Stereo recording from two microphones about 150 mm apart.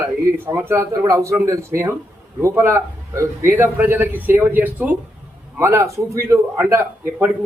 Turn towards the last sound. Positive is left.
turn(degrees=-15)  # may be behind; listen again after turning